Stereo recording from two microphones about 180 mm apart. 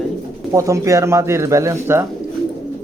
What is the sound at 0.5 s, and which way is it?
Speech, 15° right (ahead or behind).